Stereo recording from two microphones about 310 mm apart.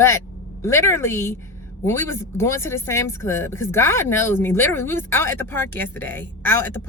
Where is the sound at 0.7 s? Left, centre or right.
Centre.